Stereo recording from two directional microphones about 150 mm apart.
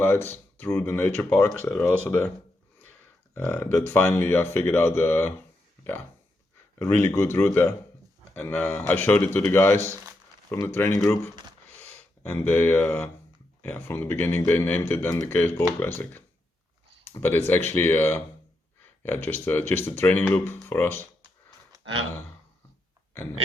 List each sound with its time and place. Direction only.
0.0 s speech: 15° left (ahead or behind)
3.3 s speech: 10° left (ahead or behind)
6.7 s speech: 20° left (ahead or behind)